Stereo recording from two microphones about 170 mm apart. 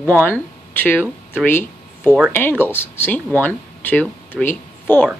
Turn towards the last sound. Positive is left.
turn(degrees=10)  # may be behind; listen again after turning